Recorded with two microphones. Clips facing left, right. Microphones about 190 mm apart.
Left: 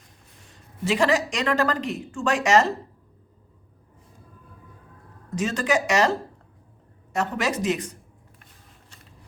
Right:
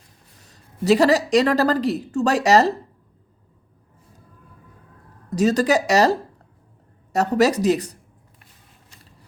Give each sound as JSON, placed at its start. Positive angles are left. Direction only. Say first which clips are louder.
{"t": 0.4, "sound": "speech", "louder": "right 8 dB", "side_deg": -40}
{"t": 5.3, "sound": "speech", "louder": "right 6 dB", "side_deg": -40}